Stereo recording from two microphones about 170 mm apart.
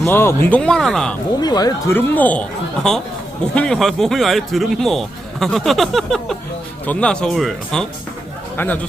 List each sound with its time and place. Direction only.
0.0 s speech: 15° left (ahead or behind)
1.4 s speech: 25° left (ahead or behind)
2.0 s speech: 10° left (ahead or behind)
3.5 s speech: 5° left (ahead or behind)